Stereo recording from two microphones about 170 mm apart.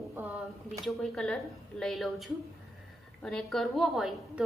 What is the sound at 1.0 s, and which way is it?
A woman's voice, 5° left (ahead or behind).